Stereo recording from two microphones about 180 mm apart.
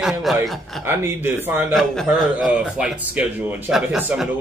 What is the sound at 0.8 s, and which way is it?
Speech, 10° right (ahead or behind).